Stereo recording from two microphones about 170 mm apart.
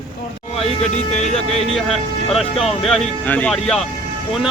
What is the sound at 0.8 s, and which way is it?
Speech, 40° left (ahead or behind).